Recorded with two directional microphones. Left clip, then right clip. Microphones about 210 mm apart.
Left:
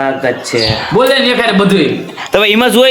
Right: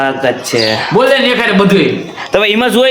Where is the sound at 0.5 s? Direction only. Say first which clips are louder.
Even; 20° right (ahead or behind).